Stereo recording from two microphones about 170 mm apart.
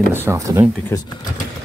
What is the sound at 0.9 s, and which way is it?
Speech, 15° left (ahead or behind).